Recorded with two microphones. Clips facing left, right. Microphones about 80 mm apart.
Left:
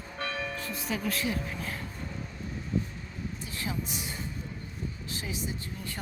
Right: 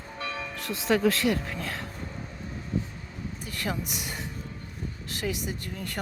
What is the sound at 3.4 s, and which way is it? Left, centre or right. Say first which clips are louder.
Speech: right 4 dB; right.